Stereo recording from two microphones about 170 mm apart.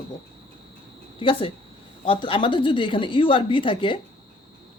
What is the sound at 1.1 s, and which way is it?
A woman's voice, 30° left (ahead or behind).